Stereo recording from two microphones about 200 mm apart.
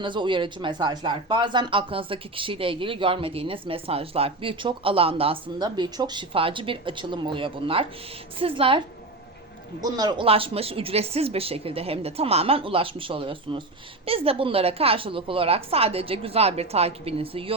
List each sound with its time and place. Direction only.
0.0 s speech: 25° right (ahead or behind)
9.8 s speech: 20° right (ahead or behind)